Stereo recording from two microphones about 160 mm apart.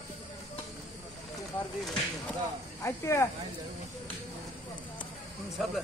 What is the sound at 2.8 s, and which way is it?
Speech, 20° left (ahead or behind).